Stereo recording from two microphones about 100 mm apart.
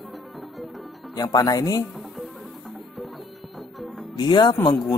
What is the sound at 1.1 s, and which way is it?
Speech, 40° left (ahead or behind).